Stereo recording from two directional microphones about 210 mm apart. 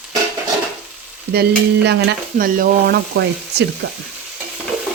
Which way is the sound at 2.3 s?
40° right (ahead or behind).